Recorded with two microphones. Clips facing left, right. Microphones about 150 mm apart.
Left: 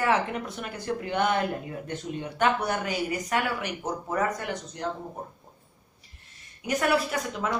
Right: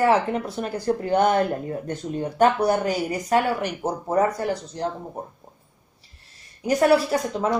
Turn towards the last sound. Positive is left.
turn(degrees=-35)  # may be behind; listen again after turning